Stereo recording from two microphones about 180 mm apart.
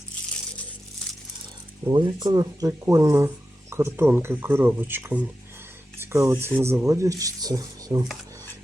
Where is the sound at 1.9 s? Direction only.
25° right (ahead or behind).